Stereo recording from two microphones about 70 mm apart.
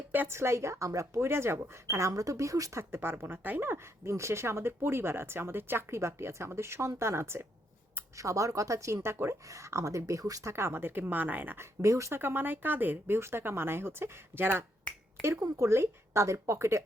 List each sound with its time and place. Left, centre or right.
0.1 s a woman's voice: right
0.3 s speech: right
2.9 s speech: right
8.1 s speech: right
9.4 s speech: right
10.5 s speech: right
12.2 s speech: right
15.2 s speech: right